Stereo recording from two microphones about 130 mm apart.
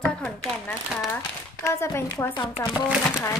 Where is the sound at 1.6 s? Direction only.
20° left (ahead or behind).